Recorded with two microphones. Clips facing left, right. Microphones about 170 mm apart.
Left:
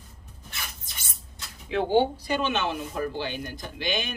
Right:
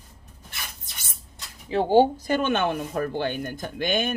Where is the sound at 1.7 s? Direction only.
40° right (ahead or behind).